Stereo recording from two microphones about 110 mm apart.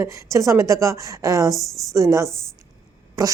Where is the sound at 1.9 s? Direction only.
25° right (ahead or behind).